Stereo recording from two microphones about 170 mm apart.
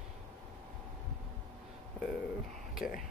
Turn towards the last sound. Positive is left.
turn(degrees=0)  # may be behind; listen again after turning